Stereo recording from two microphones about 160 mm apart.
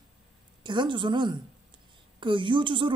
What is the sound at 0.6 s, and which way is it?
A woman's voice, 30° right (ahead or behind).